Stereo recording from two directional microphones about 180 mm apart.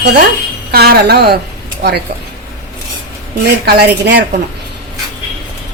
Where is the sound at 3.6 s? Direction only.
60° right (ahead or behind).